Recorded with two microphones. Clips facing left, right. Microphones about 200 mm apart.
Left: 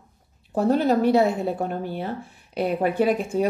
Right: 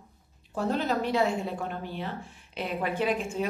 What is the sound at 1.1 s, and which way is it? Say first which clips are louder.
Speech: left 7 dB; 40° left (ahead or behind).